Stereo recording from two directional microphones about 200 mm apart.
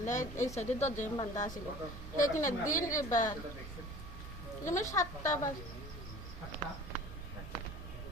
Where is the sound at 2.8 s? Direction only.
15° left (ahead or behind).